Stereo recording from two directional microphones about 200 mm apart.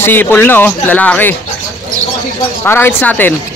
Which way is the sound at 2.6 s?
10° left (ahead or behind).